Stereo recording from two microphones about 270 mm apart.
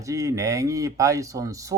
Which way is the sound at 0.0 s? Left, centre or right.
Centre.